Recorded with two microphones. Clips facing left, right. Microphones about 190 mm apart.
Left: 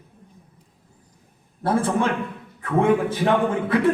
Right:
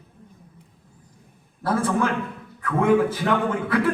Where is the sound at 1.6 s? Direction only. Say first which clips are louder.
Left 1 dB; 25° left (ahead or behind).